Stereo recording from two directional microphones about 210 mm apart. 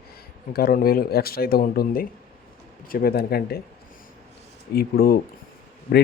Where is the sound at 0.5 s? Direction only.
45° left (ahead or behind).